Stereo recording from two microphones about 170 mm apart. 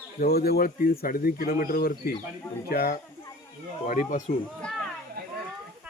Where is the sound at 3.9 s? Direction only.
50° left (ahead or behind).